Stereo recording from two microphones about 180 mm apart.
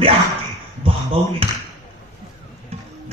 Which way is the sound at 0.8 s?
30° right (ahead or behind).